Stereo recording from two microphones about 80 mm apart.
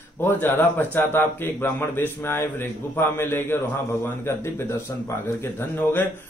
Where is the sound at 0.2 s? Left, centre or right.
Left.